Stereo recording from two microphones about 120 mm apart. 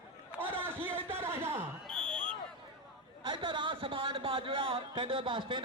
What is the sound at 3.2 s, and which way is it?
Speech, 40° right (ahead or behind).